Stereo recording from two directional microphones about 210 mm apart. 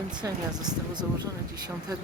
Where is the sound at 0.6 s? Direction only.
20° right (ahead or behind).